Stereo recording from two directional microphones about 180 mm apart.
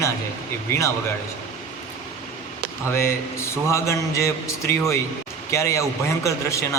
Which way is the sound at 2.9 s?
15° left (ahead or behind).